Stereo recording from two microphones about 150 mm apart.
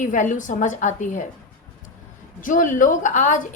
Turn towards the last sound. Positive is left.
turn(degrees=55)  # may be behind; listen again after turning